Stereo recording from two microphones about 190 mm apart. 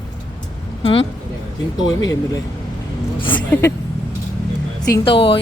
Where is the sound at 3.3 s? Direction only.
10° left (ahead or behind).